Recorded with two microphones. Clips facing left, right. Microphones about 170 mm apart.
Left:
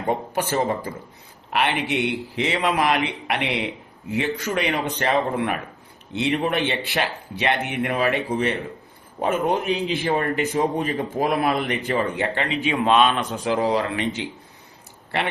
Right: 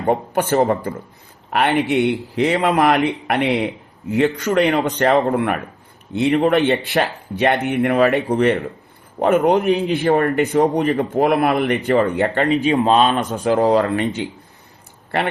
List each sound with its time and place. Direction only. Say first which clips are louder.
0.1 s a man's voice: right 6 dB; 55° right (ahead or behind); by 13.2 s 35° right (ahead or behind)
13.3 s speech: right 6 dB; 50° right (ahead or behind)